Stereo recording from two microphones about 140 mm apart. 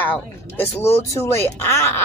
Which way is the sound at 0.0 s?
15° left (ahead or behind).